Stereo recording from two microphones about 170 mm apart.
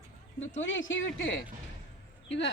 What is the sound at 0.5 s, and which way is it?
Speech, 90° left.